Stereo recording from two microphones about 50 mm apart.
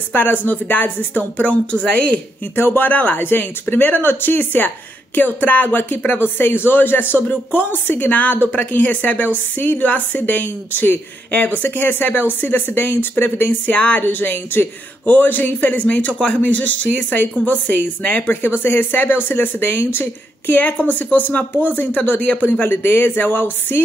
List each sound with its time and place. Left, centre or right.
0.1 s a woman's voice: left
2.5 s a woman's voice: left
14.0 s a woman's voice: left
18.2 s a woman's voice: left
20.8 s a woman's voice: left
22.5 s speech: left